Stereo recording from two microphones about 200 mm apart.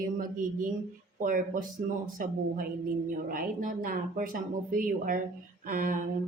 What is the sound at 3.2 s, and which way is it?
Speech, 45° right (ahead or behind).